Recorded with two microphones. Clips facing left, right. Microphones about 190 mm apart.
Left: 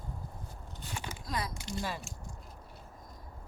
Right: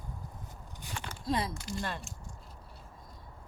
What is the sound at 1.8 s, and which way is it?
Speech, 5° left (ahead or behind).